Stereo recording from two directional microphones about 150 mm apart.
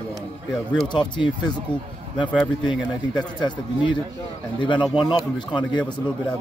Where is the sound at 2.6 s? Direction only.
30° left (ahead or behind).